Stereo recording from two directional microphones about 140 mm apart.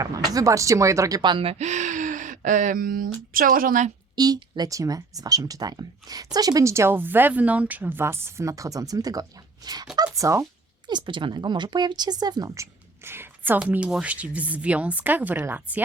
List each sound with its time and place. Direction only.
0.0 s speech: 25° right (ahead or behind); by 3.8 s 90° right
4.1 s a woman's voice: 30° right (ahead or behind)
10.8 s speech: 35° right (ahead or behind)
13.1 s a woman's voice: 15° right (ahead or behind)